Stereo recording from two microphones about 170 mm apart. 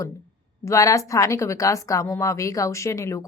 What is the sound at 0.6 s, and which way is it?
A woman's voice, 15° left (ahead or behind).